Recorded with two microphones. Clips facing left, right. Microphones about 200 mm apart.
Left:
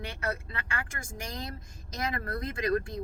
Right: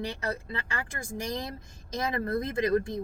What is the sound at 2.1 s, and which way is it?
Speech, 20° right (ahead or behind).